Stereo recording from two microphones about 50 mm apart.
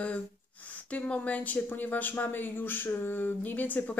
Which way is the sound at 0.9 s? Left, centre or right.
Left.